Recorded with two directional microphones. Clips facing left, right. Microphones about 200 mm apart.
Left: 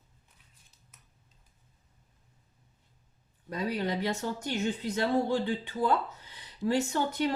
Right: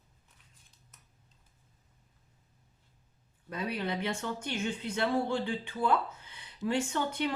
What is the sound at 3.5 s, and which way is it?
Speech, 35° left (ahead or behind).